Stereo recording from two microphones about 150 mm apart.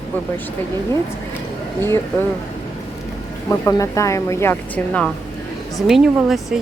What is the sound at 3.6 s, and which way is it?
Speech, 20° left (ahead or behind).